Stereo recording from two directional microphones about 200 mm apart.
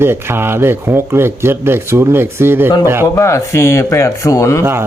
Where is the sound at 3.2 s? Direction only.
15° left (ahead or behind).